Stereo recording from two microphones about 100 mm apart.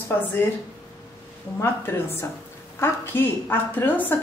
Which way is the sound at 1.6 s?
25° left (ahead or behind).